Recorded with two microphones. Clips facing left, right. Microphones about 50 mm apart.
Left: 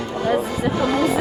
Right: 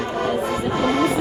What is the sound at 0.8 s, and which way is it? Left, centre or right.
Music, right.